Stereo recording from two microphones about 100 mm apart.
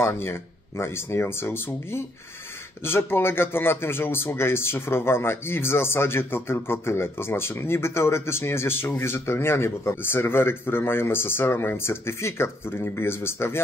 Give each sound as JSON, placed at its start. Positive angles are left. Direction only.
{"t": 0.0, "sound": "speech", "side_deg": 25}